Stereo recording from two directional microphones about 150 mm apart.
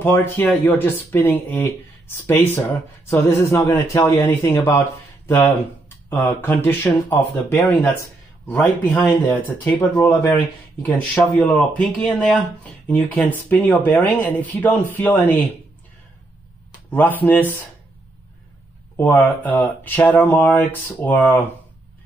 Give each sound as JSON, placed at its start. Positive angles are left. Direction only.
{"t": 0.0, "sound": "speech", "side_deg": 15}
{"t": 11.3, "sound": "speech", "side_deg": 10}
{"t": 16.9, "sound": "speech", "side_deg": 10}
{"t": 18.9, "sound": "speech", "side_deg": 10}